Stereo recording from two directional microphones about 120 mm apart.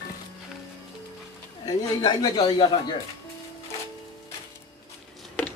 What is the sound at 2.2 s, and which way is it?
Speech, 35° left (ahead or behind).